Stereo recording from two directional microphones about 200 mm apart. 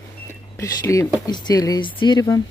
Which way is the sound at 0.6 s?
15° left (ahead or behind).